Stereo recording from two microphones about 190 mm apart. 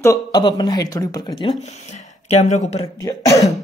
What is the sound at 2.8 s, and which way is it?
Speech, 15° left (ahead or behind).